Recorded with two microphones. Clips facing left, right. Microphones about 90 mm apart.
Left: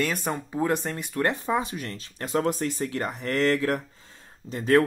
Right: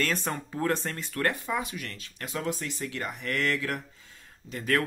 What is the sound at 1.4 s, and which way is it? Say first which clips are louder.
Speech: left 5 dB; 30° left (ahead or behind).